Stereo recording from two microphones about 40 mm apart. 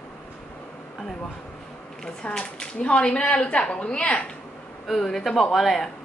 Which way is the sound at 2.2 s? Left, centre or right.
Left.